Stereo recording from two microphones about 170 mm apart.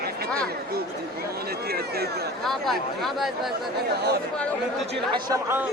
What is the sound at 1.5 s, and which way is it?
Speech, 65° right (ahead or behind).